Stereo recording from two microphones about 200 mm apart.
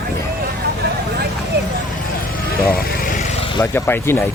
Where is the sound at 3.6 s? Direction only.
10° left (ahead or behind).